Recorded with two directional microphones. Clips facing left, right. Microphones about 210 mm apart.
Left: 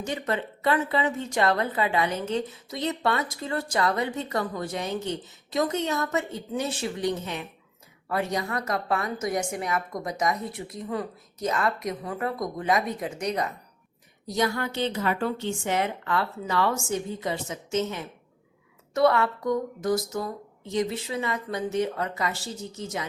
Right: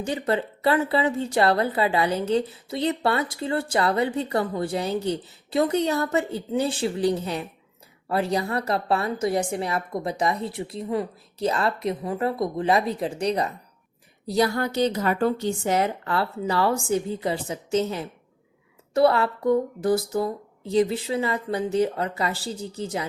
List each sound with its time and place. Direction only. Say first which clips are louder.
0.0 s a woman's voice: right 4 dB; 35° right (ahead or behind)